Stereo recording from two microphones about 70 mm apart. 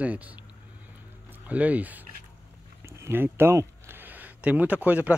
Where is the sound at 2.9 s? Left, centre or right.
Right.